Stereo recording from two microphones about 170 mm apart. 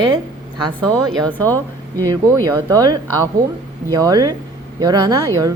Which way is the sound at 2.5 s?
20° right (ahead or behind).